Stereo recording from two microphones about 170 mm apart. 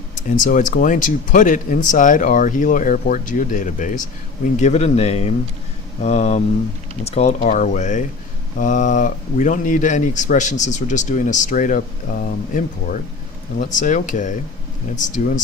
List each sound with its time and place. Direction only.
0.3 s speech: 50° left (ahead or behind)